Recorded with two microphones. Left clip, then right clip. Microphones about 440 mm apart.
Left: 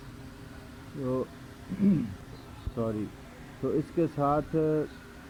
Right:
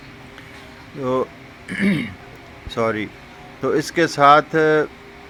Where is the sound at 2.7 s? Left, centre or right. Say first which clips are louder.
Right 12 dB; centre.